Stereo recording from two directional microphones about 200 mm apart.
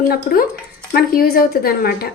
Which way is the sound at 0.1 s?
45° left (ahead or behind).